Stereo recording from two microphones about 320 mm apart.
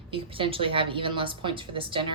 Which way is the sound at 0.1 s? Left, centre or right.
Centre.